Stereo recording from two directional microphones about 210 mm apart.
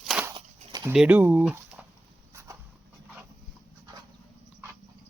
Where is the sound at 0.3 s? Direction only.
15° right (ahead or behind).